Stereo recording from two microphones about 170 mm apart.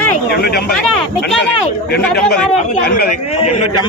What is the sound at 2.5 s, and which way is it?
Speech, 40° left (ahead or behind).